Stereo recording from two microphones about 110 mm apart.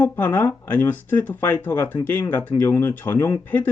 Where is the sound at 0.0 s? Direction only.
20° left (ahead or behind).